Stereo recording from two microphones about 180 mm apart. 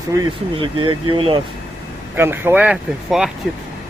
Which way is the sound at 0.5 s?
30° right (ahead or behind).